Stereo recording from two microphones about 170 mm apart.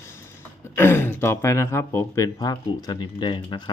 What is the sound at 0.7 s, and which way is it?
Speech, 15° left (ahead or behind).